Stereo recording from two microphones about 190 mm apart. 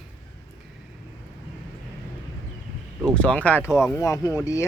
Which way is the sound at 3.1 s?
5° left (ahead or behind).